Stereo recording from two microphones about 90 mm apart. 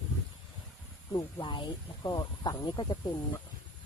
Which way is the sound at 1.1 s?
55° left (ahead or behind).